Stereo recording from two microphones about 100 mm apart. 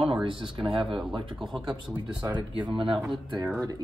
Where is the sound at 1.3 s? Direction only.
5° right (ahead or behind).